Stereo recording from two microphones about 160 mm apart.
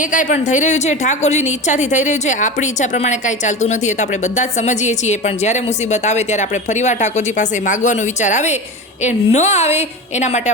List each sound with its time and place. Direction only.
0.0 s a woman's voice: 55° left (ahead or behind)